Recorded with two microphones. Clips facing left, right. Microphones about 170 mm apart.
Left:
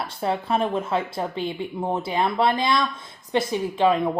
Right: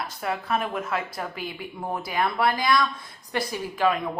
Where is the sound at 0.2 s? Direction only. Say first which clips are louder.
Left 4 dB; 25° left (ahead or behind).